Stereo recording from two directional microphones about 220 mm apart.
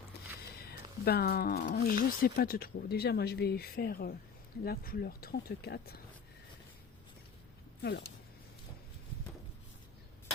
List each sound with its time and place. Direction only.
0.6 s speech: 45° left (ahead or behind)
7.8 s speech: 45° left (ahead or behind)